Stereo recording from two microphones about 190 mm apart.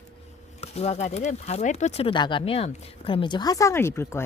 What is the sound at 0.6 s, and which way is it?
Speech, 35° left (ahead or behind).